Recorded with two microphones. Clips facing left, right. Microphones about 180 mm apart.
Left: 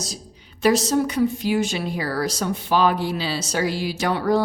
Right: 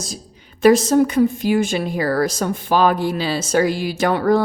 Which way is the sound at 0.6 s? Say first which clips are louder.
Right 6 dB; 50° right (ahead or behind).